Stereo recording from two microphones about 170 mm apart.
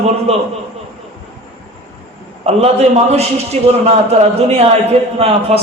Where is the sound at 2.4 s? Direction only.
40° right (ahead or behind).